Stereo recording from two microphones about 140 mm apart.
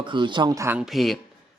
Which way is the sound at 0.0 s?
35° right (ahead or behind).